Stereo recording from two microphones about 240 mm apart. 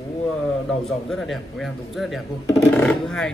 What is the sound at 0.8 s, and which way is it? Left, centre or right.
Speech, centre.